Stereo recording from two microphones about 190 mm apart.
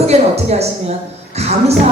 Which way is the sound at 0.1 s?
35° right (ahead or behind).